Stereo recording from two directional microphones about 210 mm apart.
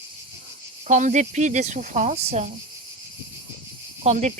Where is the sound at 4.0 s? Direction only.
35° right (ahead or behind).